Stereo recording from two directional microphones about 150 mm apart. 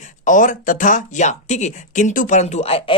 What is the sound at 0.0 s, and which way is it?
Speech, 55° left (ahead or behind).